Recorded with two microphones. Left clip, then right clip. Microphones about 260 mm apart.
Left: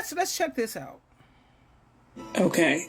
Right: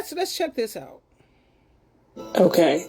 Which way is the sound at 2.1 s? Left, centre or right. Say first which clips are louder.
Right 7 dB; right.